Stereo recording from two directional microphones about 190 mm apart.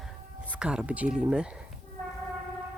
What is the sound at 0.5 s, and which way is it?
Speech, 5° right (ahead or behind).